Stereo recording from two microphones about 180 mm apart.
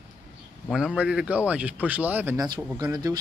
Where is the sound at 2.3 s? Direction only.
25° right (ahead or behind).